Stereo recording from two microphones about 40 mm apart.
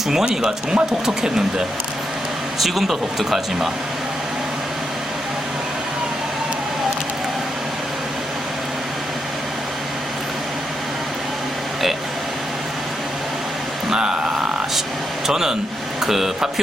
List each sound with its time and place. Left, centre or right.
0.3 s speech: centre
2.6 s speech: centre
13.9 s a sound: centre
15.3 s speech: centre